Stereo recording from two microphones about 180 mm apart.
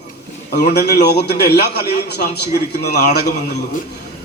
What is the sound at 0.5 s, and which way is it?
A man's voice, 65° left (ahead or behind).